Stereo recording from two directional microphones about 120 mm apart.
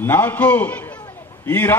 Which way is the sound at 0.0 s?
15° left (ahead or behind).